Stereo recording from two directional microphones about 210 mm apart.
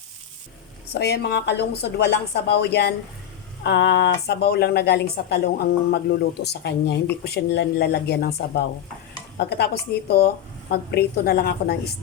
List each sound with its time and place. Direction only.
0.9 s speech: 50° left (ahead or behind)
10.7 s speech: 45° left (ahead or behind)